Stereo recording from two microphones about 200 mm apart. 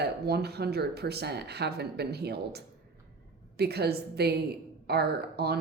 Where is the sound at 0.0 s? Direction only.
55° right (ahead or behind).